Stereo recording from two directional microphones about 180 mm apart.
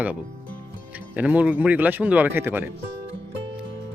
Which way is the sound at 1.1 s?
10° right (ahead or behind).